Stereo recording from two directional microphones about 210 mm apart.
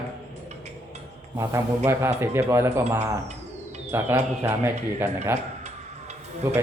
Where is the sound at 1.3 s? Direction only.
15° right (ahead or behind).